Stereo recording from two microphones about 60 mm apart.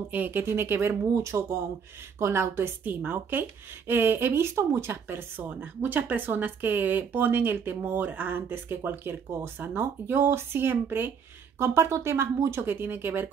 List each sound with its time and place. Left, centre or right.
0.1 s speech: right
0.4 s speech: right
2.8 s speech: right